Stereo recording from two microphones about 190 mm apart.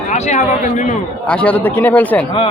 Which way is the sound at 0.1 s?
40° left (ahead or behind).